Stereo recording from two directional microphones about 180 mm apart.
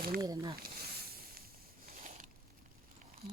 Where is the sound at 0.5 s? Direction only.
60° right (ahead or behind).